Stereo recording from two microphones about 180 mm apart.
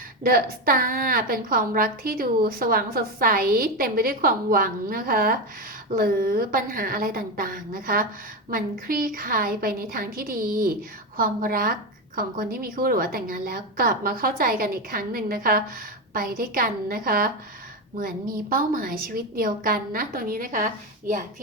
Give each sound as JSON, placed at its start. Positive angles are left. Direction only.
{"t": 0.2, "sound": "a woman's voice", "side_deg": -55}